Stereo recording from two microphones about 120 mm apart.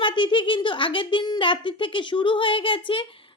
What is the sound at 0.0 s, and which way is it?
A child's voice, 45° left (ahead or behind).